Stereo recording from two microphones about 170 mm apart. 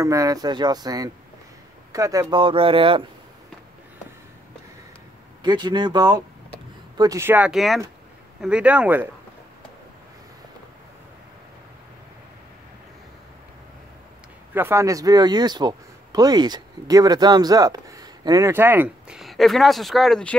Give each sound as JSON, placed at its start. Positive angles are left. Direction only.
{"t": 0.0, "sound": "speech", "side_deg": -20}
{"t": 5.4, "sound": "speech", "side_deg": -25}
{"t": 14.5, "sound": "speech", "side_deg": -15}